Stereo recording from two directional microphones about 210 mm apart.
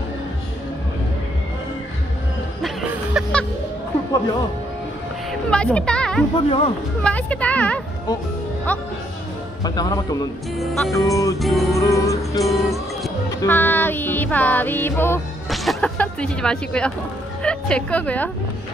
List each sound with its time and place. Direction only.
3.2 s music: 5° left (ahead or behind)
5.5 s speech: 5° left (ahead or behind)
6.3 s speech: 25° left (ahead or behind)
7.0 s music: 5° left (ahead or behind)
10.6 s speech: centre (ahead or behind)
11.0 s music: 15° left (ahead or behind)
11.3 s speech: centre (ahead or behind)
11.7 s music: 15° left (ahead or behind)
12.4 s music: centre (ahead or behind)
15.5 s a woman's voice: centre (ahead or behind)